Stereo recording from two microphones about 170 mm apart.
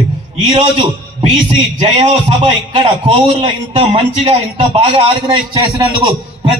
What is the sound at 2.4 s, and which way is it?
A man's voice, 30° right (ahead or behind).